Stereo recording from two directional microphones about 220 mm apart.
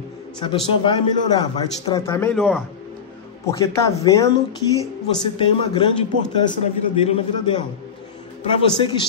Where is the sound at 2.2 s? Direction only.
5° right (ahead or behind).